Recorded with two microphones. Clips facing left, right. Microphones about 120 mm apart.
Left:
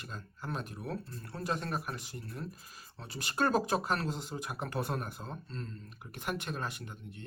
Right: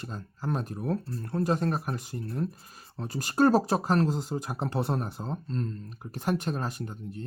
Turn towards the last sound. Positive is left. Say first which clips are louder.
# right 9 dB
turn(degrees=-35)  # may be behind; listen again after turning